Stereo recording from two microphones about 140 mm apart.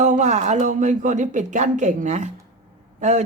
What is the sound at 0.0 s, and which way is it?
Speech, 60° right (ahead or behind).